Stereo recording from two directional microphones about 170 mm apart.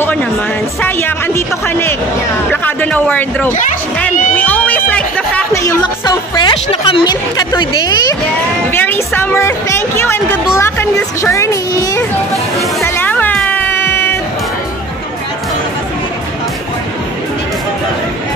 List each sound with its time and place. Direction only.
0.0 s music: 10° left (ahead or behind)
0.7 s a woman's voice: 10° left (ahead or behind)
8.6 s a woman's voice: 10° left (ahead or behind)
12.8 s music: 10° left (ahead or behind)